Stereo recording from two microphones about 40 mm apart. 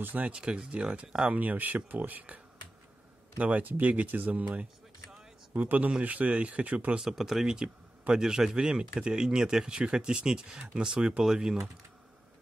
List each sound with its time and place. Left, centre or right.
0.2 s speech: right
1.3 s speech: right
7.0 s speech: centre
7.4 s speech: centre